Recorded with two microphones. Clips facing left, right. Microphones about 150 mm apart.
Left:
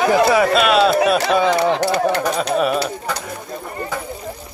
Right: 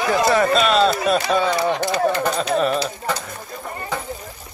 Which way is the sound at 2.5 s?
5° left (ahead or behind).